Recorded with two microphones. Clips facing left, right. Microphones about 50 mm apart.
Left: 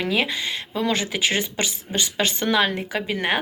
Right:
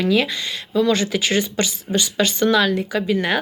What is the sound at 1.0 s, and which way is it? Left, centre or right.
Speech, left.